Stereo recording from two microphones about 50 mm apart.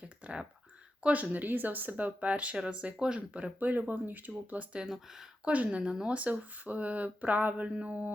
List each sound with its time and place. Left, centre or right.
0.2 s computer keyboard: right
1.0 s speech: right
5.5 s speech: right
5.9 s speech: centre
6.1 s speech: right